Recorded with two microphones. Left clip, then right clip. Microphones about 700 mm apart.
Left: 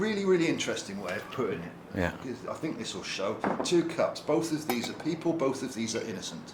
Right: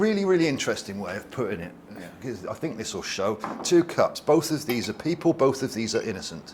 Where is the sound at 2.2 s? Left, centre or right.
Right.